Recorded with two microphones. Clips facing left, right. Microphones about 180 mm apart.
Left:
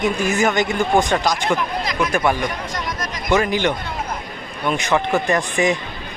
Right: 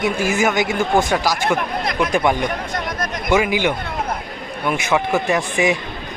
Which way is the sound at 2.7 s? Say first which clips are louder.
Right 2 dB; 55° right (ahead or behind).